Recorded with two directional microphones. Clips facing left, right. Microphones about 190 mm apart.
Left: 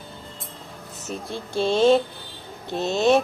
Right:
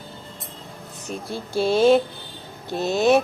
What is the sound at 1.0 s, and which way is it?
Speech, 5° right (ahead or behind).